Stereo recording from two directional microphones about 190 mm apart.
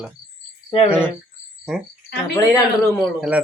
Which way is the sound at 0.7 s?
30° left (ahead or behind).